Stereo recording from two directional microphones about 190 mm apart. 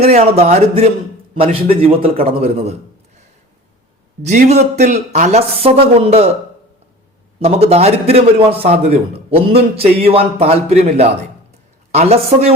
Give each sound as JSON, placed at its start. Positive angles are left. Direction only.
{"t": 0.0, "sound": "a man's voice", "side_deg": -30}
{"t": 4.2, "sound": "a man's voice", "side_deg": -35}
{"t": 7.3, "sound": "a man's voice", "side_deg": -30}